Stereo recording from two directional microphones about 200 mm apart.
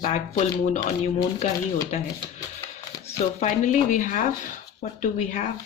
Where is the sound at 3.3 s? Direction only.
35° left (ahead or behind).